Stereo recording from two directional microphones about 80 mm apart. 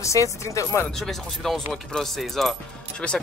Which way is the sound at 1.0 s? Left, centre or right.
Centre.